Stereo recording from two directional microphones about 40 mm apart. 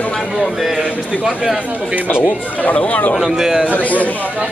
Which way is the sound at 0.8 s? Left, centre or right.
Centre.